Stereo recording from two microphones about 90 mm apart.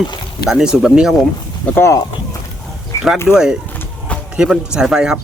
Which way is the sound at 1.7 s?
30° left (ahead or behind).